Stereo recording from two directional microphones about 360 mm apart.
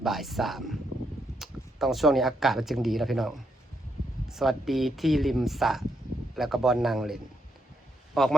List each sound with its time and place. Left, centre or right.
0.0 s speech: centre